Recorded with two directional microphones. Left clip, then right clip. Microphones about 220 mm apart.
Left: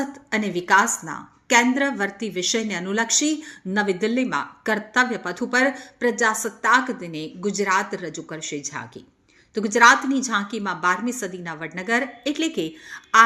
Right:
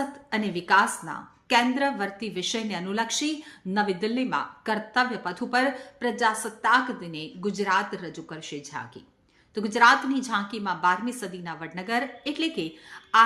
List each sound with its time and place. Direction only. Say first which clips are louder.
0.0 s speech: left 4 dB; 15° left (ahead or behind)